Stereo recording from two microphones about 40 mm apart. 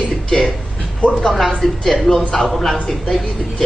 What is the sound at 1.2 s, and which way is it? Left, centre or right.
A man's voice, centre.